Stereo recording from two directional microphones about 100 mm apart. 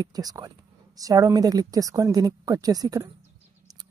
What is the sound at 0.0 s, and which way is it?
Speech, 40° right (ahead or behind).